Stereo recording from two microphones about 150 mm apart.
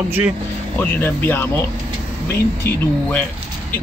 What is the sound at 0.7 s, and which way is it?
A man's voice, 15° left (ahead or behind).